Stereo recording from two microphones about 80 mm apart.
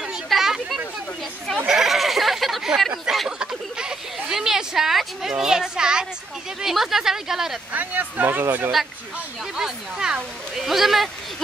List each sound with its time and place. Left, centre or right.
0.0 s a sound: centre
1.7 s sheep: centre
3.1 s a sound: centre
6.6 s speech: centre
7.7 s speech: right
9.6 s speech: centre